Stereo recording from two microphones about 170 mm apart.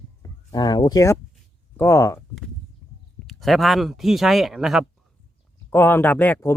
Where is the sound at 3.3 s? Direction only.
Centre (ahead or behind).